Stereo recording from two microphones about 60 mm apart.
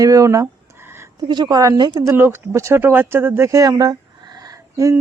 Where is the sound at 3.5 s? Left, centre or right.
Right.